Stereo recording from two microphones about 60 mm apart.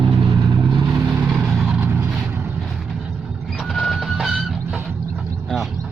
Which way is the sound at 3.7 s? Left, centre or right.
Centre.